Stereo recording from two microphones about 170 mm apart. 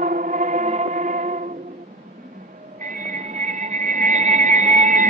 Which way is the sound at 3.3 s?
50° right (ahead or behind).